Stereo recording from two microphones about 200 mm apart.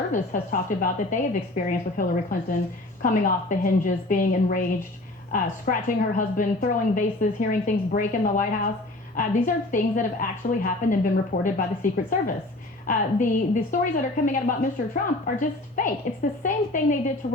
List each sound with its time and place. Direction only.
0.1 s a woman's voice: 40° left (ahead or behind)
17.2 s a woman's voice: 50° left (ahead or behind)